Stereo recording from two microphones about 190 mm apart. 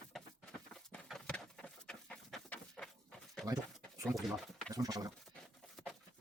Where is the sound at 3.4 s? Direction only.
20° right (ahead or behind).